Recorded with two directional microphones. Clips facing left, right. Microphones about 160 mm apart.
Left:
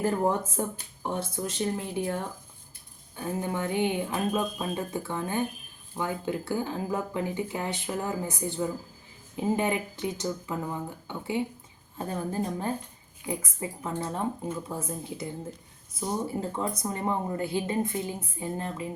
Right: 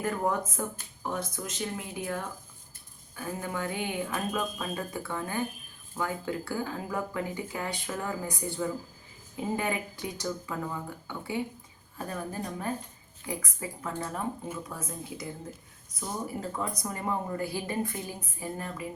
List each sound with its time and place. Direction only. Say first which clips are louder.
0.0 s a woman's voice: left 3 dB; 30° left (ahead or behind)